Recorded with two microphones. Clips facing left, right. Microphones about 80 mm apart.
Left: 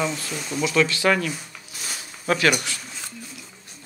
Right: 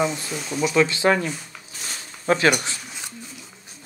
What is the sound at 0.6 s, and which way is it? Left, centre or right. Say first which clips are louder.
Speech: right 2 dB; right.